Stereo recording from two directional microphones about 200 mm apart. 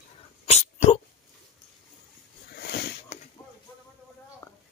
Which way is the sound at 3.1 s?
30° left (ahead or behind).